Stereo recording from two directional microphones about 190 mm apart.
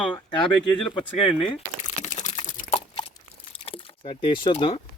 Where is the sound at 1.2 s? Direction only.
30° left (ahead or behind).